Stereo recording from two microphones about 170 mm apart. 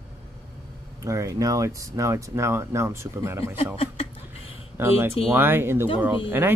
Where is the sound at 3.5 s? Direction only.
35° left (ahead or behind).